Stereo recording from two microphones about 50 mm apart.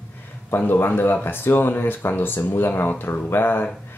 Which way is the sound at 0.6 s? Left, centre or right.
Left.